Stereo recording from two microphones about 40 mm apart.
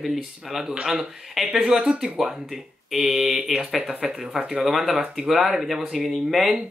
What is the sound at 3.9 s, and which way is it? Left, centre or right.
Speech, right.